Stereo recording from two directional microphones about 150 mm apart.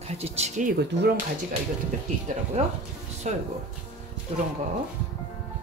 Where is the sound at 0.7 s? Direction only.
90° right.